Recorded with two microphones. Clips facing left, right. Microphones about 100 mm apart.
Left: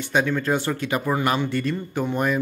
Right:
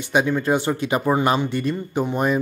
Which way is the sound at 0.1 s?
15° right (ahead or behind).